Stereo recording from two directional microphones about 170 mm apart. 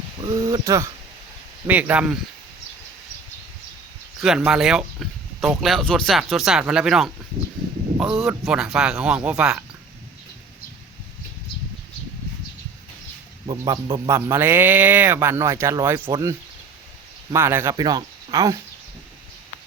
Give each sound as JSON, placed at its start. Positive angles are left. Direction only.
{"t": 0.3, "sound": "a man's voice", "side_deg": -20}
{"t": 4.2, "sound": "speech", "side_deg": -5}
{"t": 13.5, "sound": "a man's voice", "side_deg": -25}
{"t": 17.3, "sound": "a man's voice", "side_deg": -15}